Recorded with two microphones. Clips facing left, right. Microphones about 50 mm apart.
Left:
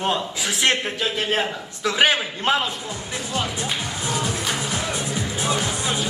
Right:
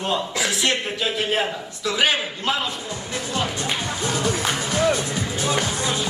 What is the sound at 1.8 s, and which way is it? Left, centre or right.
Speech, left.